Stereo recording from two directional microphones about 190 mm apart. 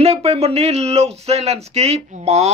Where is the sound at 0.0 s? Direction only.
35° right (ahead or behind).